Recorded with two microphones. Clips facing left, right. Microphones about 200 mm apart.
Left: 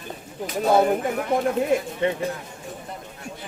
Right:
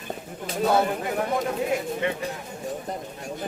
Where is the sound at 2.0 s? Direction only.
30° left (ahead or behind).